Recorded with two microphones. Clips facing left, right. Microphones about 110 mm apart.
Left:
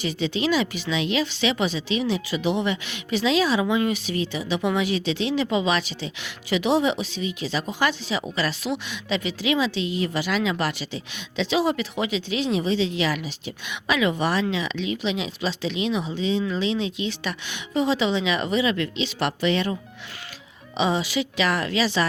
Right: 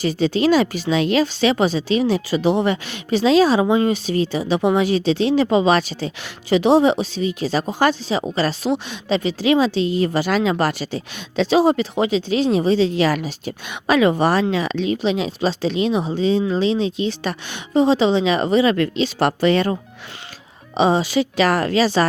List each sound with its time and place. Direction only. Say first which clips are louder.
0.0 s speech: right 7 dB; 40° right (ahead or behind)